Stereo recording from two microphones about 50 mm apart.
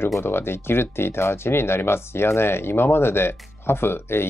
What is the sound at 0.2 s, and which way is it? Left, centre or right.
Speech, left.